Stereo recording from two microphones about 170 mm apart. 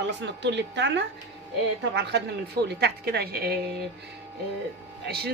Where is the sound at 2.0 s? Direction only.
75° right (ahead or behind).